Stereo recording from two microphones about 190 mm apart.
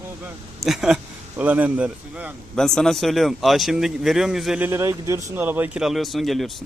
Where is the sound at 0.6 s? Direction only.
Centre (ahead or behind).